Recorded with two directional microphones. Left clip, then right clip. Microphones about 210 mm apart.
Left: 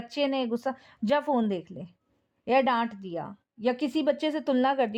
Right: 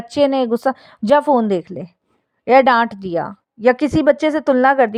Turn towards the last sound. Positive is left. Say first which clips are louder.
# right 12 dB
turn(degrees=-20)  # may be behind; listen again after turning